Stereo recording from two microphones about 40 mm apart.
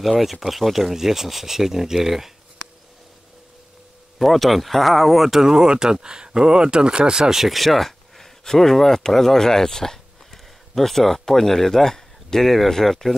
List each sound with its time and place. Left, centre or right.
0.0 s speech: centre
4.2 s speech: centre
7.3 s speech: centre